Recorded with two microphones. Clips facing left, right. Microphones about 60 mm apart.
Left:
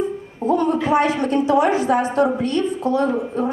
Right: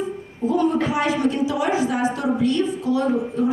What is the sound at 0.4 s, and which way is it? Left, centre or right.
A woman's voice, left.